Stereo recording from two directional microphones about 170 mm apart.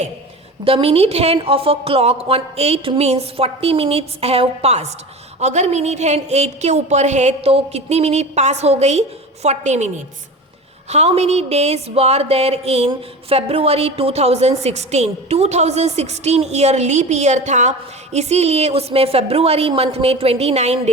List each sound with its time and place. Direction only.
0.6 s speech: 35° right (ahead or behind)